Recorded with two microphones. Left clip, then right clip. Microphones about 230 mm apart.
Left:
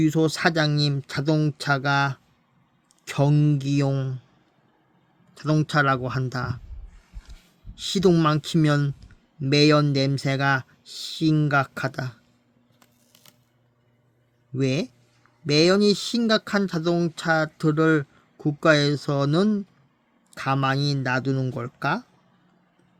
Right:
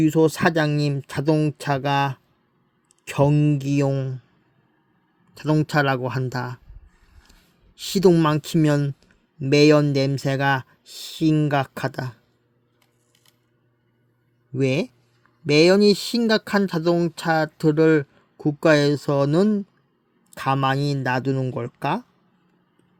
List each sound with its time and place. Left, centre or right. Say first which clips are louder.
0.1 s speech: right 3 dB; centre
3.2 s speech: right 4 dB; centre
5.4 s speech: right 1 dB; centre
7.9 s speech: right 3 dB; centre
10.9 s speech: right 2 dB; centre
11.3 s speech: right 1 dB; centre
14.6 s speech: right 3 dB; centre